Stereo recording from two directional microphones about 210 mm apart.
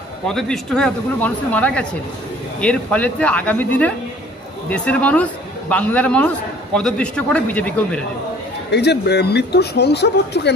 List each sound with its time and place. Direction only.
0.3 s a man's voice: 5° left (ahead or behind)
8.7 s speech: 50° left (ahead or behind)